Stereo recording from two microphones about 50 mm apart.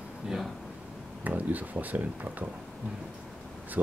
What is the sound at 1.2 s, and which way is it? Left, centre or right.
Speech, right.